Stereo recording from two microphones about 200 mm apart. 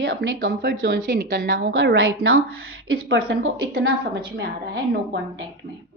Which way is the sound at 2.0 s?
90° right.